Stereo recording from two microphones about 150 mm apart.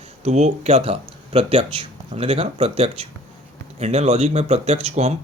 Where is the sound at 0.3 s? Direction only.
45° right (ahead or behind).